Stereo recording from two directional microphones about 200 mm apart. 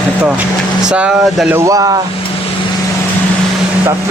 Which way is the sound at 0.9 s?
5° right (ahead or behind).